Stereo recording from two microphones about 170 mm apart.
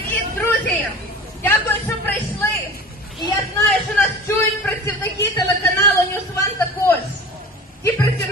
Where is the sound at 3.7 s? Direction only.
10° left (ahead or behind).